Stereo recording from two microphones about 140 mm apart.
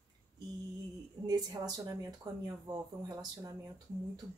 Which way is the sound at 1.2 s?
30° right (ahead or behind).